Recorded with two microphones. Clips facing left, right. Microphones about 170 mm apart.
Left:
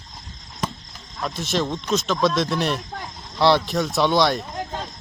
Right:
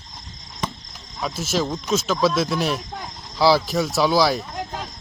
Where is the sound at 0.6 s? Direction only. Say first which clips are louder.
Left 1 dB; 5° left (ahead or behind).